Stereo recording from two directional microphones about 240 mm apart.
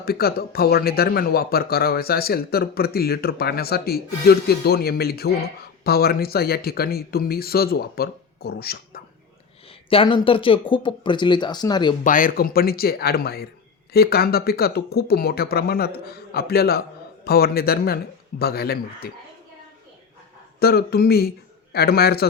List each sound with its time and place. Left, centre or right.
0.0 s speech: left
9.9 s speech: left
12.0 s speech: left
20.6 s speech: left